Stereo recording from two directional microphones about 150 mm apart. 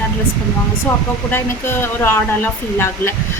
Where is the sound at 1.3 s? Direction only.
15° left (ahead or behind).